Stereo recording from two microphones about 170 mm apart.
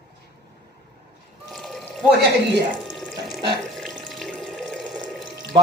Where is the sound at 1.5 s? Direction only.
Centre (ahead or behind).